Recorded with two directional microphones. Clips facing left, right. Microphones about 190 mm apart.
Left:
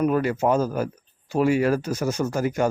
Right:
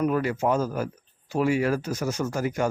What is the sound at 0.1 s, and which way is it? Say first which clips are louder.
Speech: left 3 dB; 35° left (ahead or behind).